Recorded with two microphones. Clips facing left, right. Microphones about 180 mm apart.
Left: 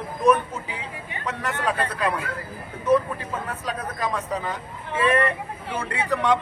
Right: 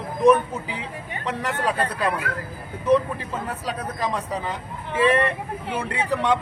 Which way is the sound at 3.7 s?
35° right (ahead or behind).